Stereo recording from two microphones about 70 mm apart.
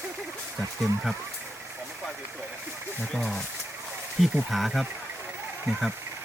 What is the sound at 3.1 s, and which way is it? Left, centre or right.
Speech, centre.